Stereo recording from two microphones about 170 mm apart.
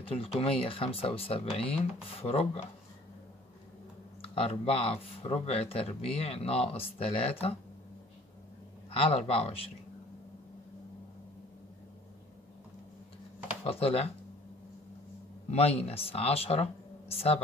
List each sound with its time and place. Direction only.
0.0 s speech: 35° left (ahead or behind)
4.2 s speech: 35° left (ahead or behind)
8.9 s speech: 35° left (ahead or behind)
13.7 s speech: 35° left (ahead or behind)
15.5 s speech: 35° left (ahead or behind)